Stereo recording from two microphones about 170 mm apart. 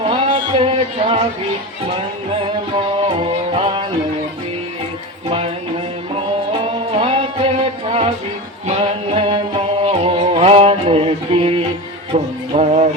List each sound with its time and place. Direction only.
0.0 s music: 30° right (ahead or behind)
2.4 s music: 35° right (ahead or behind)
7.0 s music: 30° right (ahead or behind)